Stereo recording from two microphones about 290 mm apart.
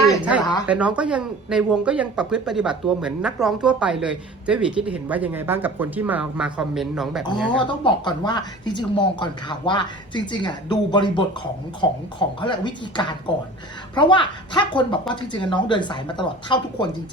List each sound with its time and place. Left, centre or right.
0.2 s a sound: centre
0.6 s speech: centre
7.7 s speech: centre